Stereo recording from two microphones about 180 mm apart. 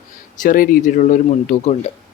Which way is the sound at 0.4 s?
50° left (ahead or behind).